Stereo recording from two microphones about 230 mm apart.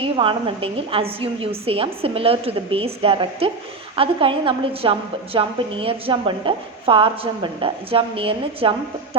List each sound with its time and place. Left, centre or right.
0.0 s a woman's voice: right